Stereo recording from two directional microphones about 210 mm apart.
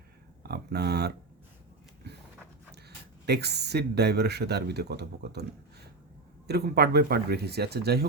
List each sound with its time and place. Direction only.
0.4 s speech: 50° right (ahead or behind)
2.0 s a sound: 50° right (ahead or behind)
3.2 s speech: 50° right (ahead or behind)
6.5 s speech: 50° right (ahead or behind)